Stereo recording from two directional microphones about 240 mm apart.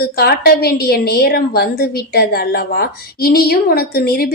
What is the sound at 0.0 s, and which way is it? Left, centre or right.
A woman's voice, left.